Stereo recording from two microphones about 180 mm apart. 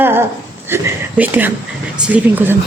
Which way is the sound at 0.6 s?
15° right (ahead or behind).